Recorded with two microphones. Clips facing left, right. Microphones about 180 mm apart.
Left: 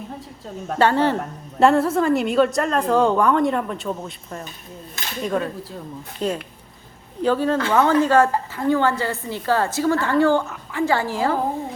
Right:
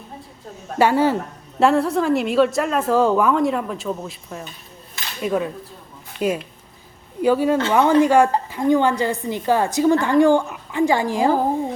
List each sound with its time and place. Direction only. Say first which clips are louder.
0.8 s a woman's voice: right 1 dB; 10° right (ahead or behind)